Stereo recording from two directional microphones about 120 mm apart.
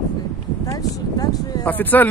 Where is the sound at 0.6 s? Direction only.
30° left (ahead or behind).